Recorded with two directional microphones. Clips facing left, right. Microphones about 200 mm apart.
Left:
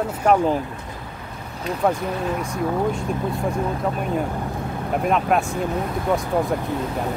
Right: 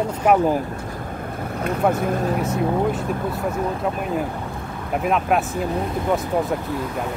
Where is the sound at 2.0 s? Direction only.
50° right (ahead or behind).